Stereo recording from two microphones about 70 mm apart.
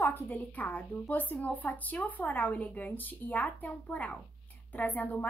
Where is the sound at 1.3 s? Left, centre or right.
Left.